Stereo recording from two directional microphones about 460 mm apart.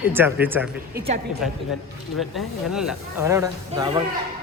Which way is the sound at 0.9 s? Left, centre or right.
Centre.